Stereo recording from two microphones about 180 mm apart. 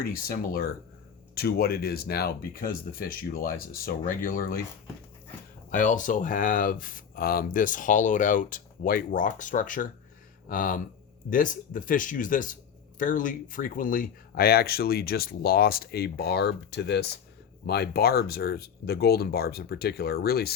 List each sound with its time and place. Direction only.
0.0 s speech: 55° left (ahead or behind)
5.7 s speech: 45° left (ahead or behind)